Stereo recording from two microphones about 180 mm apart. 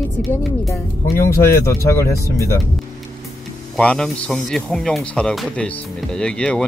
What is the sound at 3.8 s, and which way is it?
Speech, 5° left (ahead or behind).